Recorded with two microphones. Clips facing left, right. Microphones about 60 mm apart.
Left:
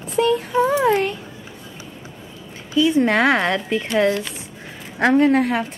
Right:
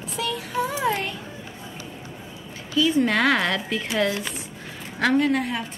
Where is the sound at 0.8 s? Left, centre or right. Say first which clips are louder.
Left 7 dB; centre.